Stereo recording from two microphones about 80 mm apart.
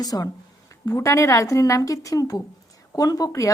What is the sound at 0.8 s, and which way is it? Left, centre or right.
Speech, left.